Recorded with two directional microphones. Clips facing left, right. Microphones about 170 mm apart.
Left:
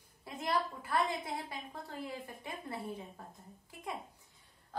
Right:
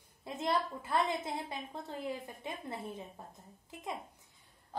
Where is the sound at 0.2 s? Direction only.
25° right (ahead or behind).